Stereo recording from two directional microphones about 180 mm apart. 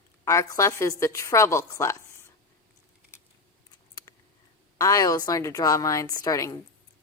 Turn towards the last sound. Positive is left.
turn(degrees=20)  # may be behind; listen again after turning